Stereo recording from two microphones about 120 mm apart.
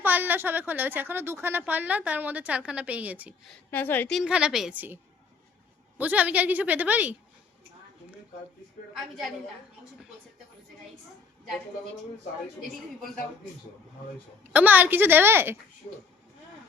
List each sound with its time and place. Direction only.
0.0 s a woman's voice: 15° right (ahead or behind)
3.7 s a woman's voice: 15° left (ahead or behind)
4.1 s a woman's voice: 5° right (ahead or behind)
6.0 s a woman's voice: 15° right (ahead or behind)
14.5 s a woman's voice: 15° right (ahead or behind)